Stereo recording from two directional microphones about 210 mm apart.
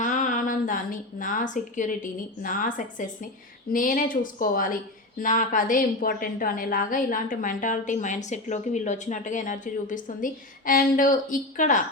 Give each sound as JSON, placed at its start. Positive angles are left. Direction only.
{"t": 0.0, "sound": "a woman's voice", "side_deg": 35}